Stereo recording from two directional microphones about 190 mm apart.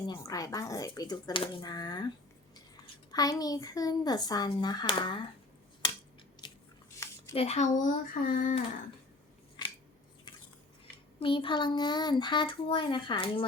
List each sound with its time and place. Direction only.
0.1 s a child's voice: 20° left (ahead or behind)
6.4 s biting: 25° left (ahead or behind)
6.9 s a sound: 15° left (ahead or behind)
7.3 s speech: 35° left (ahead or behind)
11.2 s a child's voice: 25° left (ahead or behind)